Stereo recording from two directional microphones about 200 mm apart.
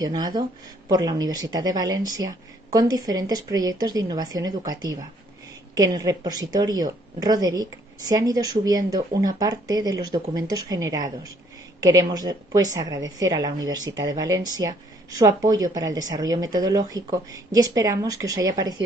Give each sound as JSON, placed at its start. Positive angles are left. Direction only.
{"t": 0.0, "sound": "a woman's voice", "side_deg": -20}